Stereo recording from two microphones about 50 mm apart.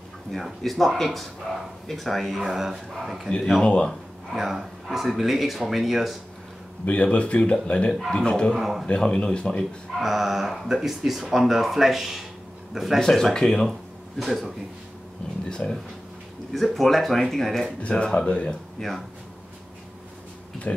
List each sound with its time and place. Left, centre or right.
0.3 s speech: centre
3.6 s speech: left
4.3 s speech: centre
6.9 s speech: left
8.5 s speech: centre
8.8 s speech: centre
9.9 s speech: centre
13.1 s speech: centre
13.7 s a sound: centre
15.5 s speech: centre
17.6 s speech: left
18.8 s speech: centre
20.7 s speech: left